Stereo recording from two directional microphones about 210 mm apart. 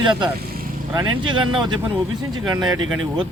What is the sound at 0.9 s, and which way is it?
Speech, 20° right (ahead or behind).